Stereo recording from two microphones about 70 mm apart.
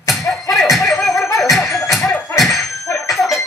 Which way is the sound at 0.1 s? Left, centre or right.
Centre.